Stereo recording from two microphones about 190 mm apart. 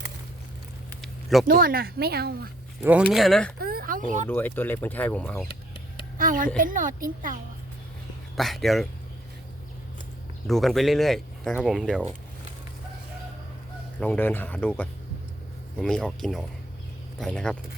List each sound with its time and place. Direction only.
1.0 s a sound: centre (ahead or behind)
1.5 s speech: 50° right (ahead or behind)
2.8 s speech: 5° right (ahead or behind)
3.6 s a sound: 50° right (ahead or behind)
4.3 s speech: 10° left (ahead or behind)
6.0 s a sound: 45° right (ahead or behind)
6.6 s speech: 45° right (ahead or behind)
8.4 s speech: centre (ahead or behind)
10.4 s speech: centre (ahead or behind)
14.0 s speech: 10° left (ahead or behind)